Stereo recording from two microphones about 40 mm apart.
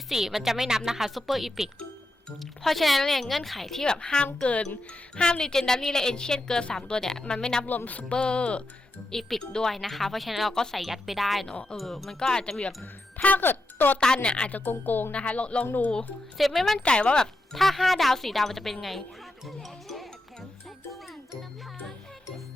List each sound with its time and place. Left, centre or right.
0.1 s speech: centre
3.8 s a woman's voice: centre
9.1 s a woman's voice: centre
10.5 s a woman's voice: centre
10.8 s speech: centre
12.3 s speech: centre
13.2 s speech: left
14.2 s speech: left
14.5 s speech: left
15.1 s speech: left
16.4 s speech: centre
16.8 s speech: left
17.5 s speech: centre
19.5 s music: centre